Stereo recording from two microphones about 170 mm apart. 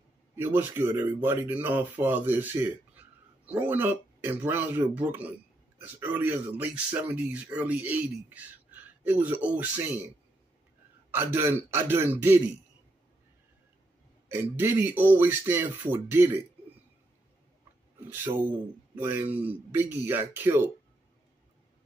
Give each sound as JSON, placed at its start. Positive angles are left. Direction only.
{"t": 0.4, "sound": "speech", "side_deg": -15}
{"t": 11.1, "sound": "speech", "side_deg": -10}
{"t": 14.3, "sound": "speech", "side_deg": -10}
{"t": 18.1, "sound": "speech", "side_deg": -10}